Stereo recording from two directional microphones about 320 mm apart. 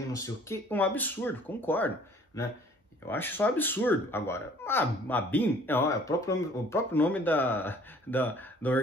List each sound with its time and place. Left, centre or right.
0.1 s speech: centre
3.1 s speech: centre